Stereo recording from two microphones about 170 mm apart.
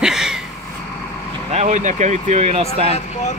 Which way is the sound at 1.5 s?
40° right (ahead or behind).